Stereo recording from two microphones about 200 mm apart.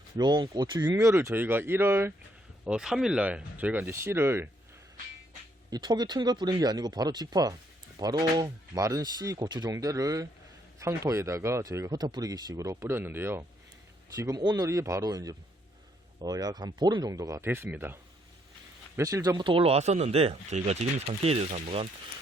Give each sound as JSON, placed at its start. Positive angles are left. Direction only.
{"t": 0.2, "sound": "speech", "side_deg": -20}
{"t": 5.7, "sound": "speech", "side_deg": -20}